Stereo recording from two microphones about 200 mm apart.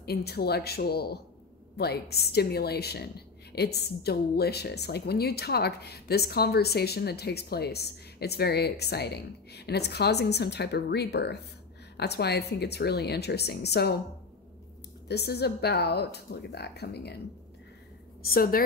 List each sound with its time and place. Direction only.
0.0 s a woman's voice: 55° left (ahead or behind)
15.0 s a woman's voice: 55° left (ahead or behind)
18.2 s a woman's voice: 45° left (ahead or behind)